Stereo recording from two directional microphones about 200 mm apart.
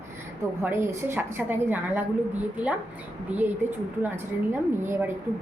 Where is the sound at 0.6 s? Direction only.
15° right (ahead or behind).